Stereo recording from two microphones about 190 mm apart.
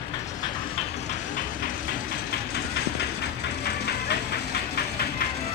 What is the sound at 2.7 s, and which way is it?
Vehicle, 60° left (ahead or behind).